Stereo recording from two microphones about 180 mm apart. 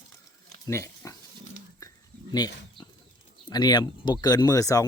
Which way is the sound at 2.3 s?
20° left (ahead or behind).